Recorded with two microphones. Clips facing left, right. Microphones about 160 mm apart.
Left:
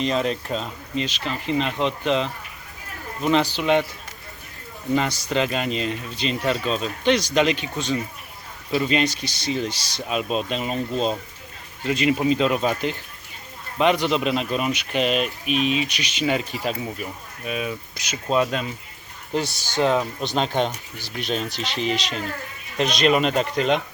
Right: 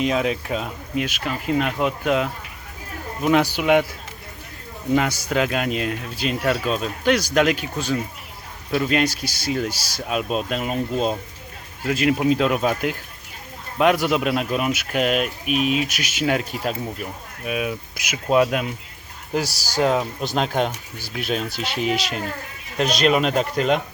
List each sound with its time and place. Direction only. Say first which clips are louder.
0.0 s speech: right 1 dB; 5° right (ahead or behind)
4.9 s speech: right 2 dB; 10° right (ahead or behind)
19.5 s speech: right 1 dB; 40° right (ahead or behind)
19.8 s speech: right 1 dB; 5° right (ahead or behind)